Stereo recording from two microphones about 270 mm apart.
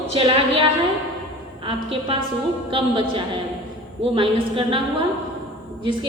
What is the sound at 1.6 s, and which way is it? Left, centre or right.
A woman's voice, centre.